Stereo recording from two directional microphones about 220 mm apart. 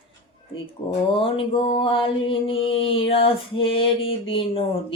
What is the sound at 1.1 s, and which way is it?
Mantra, 25° left (ahead or behind).